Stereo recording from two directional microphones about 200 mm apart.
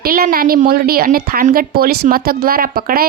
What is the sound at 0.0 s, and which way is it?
A woman's voice, 45° right (ahead or behind).